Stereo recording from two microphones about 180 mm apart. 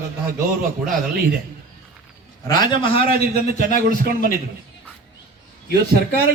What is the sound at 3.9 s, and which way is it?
Speech, 55° right (ahead or behind).